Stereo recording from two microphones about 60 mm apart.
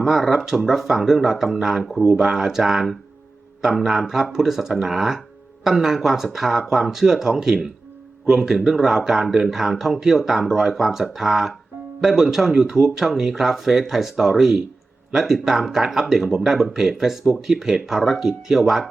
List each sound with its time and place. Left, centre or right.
0.0 s speech: centre